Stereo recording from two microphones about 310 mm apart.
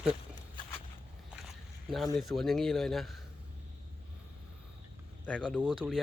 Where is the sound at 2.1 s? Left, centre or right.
Centre.